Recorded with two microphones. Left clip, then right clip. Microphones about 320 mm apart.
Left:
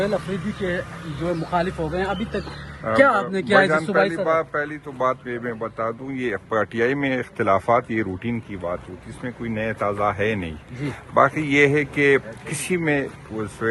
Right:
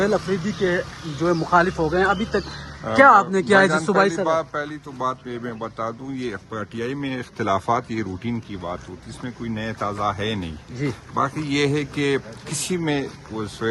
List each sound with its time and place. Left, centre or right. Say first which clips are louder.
0.0 s a man's voice: right 3 dB; right
3.7 s a man's voice: even; centre
12.5 s speech: even; centre
12.7 s a man's voice: left 3 dB; centre